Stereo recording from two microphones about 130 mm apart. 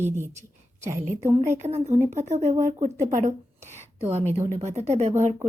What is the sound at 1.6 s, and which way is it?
Speech, 60° right (ahead or behind).